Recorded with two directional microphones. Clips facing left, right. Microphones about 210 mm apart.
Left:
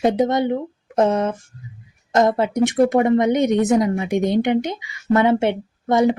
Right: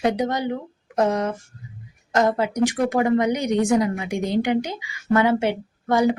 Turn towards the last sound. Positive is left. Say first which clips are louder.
# left 2 dB
turn(degrees=25)  # may be behind; listen again after turning